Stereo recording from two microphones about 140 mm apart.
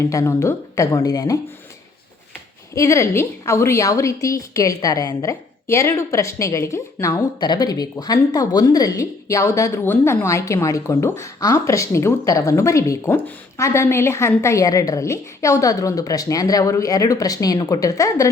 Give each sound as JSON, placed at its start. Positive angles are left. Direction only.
{"t": 0.0, "sound": "a woman's voice", "side_deg": 20}
{"t": 2.7, "sound": "a woman's voice", "side_deg": 20}